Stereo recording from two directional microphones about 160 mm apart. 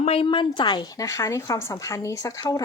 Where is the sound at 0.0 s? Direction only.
35° left (ahead or behind).